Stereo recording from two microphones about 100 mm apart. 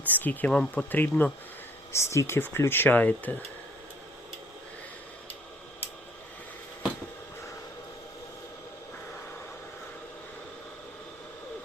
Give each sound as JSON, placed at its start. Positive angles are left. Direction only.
{"t": 0.1, "sound": "speech", "side_deg": 15}
{"t": 1.9, "sound": "speech", "side_deg": 30}